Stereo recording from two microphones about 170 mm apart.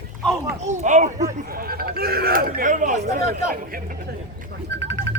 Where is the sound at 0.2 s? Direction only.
Centre (ahead or behind).